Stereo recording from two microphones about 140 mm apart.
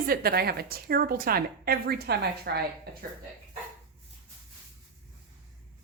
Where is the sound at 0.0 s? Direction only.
90° right.